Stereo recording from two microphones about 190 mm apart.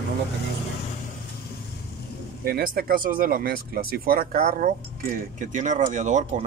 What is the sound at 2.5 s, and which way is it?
Speech, 55° right (ahead or behind).